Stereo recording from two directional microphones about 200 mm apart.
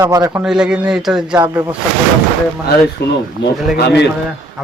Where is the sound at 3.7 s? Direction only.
60° left (ahead or behind).